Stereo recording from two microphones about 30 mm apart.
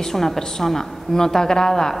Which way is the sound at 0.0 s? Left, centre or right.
Centre.